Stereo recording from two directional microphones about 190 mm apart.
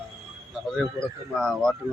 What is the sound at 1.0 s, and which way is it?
Speech, 5° left (ahead or behind).